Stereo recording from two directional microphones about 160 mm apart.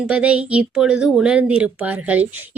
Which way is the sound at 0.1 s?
5° right (ahead or behind).